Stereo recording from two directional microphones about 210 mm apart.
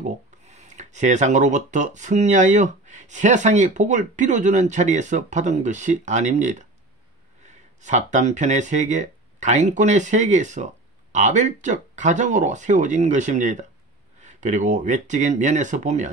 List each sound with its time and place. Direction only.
0.0 s speech: 35° right (ahead or behind)